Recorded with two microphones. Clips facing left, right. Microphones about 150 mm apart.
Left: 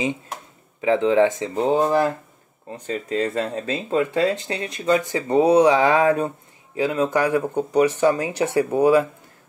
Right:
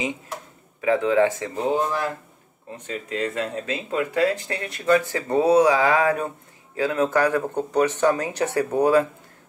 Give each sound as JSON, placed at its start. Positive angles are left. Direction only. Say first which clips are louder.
{"t": 0.7, "sound": "speech", "louder": "left 2 dB", "side_deg": 25}
{"t": 1.7, "sound": "speech", "louder": "left 5 dB", "side_deg": 35}
{"t": 6.8, "sound": "speech", "louder": "even", "side_deg": 15}